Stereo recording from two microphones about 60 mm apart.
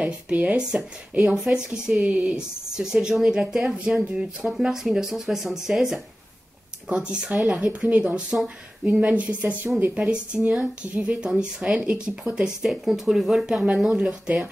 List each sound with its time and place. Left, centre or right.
0.0 s speech: right
12.6 s speech: centre